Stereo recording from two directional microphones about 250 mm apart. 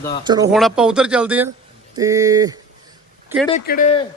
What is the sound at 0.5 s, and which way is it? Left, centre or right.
Speech, centre.